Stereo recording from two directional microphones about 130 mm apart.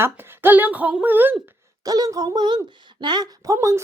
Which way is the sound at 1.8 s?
30° right (ahead or behind).